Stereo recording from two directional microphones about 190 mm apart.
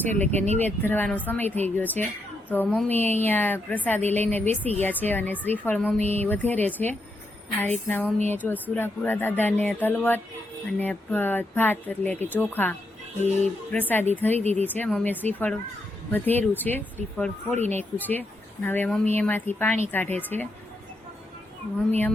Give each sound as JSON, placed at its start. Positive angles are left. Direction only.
{"t": 0.0, "sound": "speech", "side_deg": 10}
{"t": 2.6, "sound": "speech", "side_deg": 0}
{"t": 2.9, "sound": "speech", "side_deg": 10}